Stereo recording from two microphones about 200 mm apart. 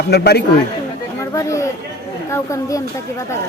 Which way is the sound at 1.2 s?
15° left (ahead or behind).